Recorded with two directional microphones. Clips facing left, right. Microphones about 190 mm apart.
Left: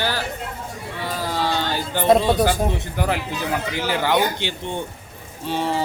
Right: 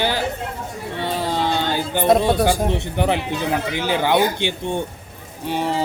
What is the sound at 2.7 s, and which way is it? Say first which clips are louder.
Speech: right 3 dB; 20° right (ahead or behind).